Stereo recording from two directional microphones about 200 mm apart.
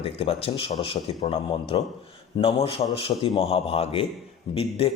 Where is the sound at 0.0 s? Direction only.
30° left (ahead or behind).